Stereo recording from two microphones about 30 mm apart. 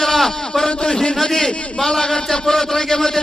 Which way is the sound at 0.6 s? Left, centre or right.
Left.